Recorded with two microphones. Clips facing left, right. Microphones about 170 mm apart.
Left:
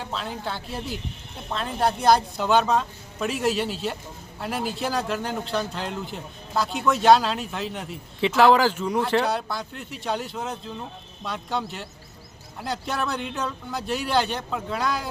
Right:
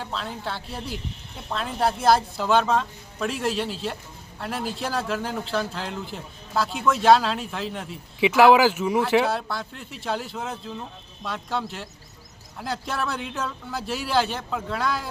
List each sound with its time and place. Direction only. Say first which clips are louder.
0.0 s speech: left 1 dB; centre (ahead or behind)